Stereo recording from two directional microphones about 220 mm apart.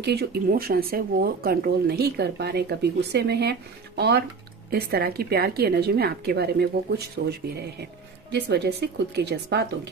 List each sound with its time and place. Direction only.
0.0 s speech: 45° right (ahead or behind)